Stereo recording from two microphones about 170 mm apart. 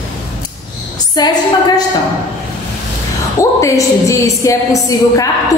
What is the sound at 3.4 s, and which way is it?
A woman's voice, 20° left (ahead or behind).